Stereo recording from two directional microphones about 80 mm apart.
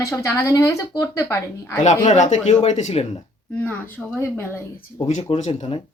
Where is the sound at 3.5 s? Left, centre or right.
Centre.